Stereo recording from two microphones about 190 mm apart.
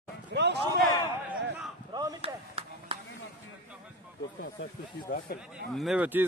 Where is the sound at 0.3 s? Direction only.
65° right (ahead or behind).